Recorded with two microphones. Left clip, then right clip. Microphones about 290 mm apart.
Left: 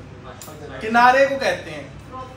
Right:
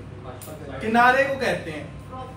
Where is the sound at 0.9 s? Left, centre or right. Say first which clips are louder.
Left 4 dB; centre.